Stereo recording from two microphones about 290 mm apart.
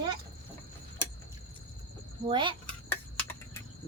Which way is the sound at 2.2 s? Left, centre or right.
Centre.